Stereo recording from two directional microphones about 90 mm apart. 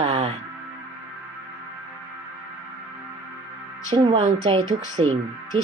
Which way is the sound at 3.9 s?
90° right.